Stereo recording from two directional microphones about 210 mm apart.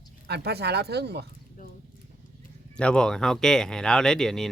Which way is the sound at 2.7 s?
5° left (ahead or behind).